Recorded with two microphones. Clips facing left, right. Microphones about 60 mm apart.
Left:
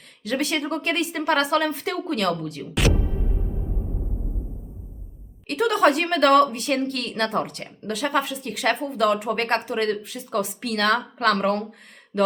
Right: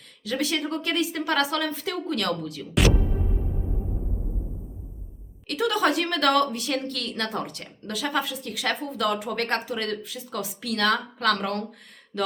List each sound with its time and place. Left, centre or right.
0.3 s a woman's voice: left
5.5 s a woman's voice: left
12.1 s mantra: left